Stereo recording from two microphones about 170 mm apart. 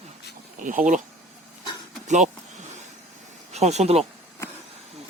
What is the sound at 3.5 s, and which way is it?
Speech, 40° right (ahead or behind).